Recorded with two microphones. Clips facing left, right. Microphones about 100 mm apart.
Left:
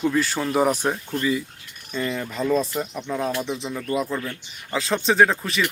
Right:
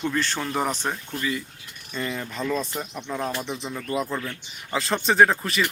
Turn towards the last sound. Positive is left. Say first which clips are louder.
# even
turn(degrees=0)  # may be behind; listen again after turning